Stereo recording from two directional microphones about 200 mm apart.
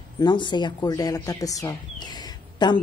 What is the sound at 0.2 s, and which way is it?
Speech, 20° left (ahead or behind).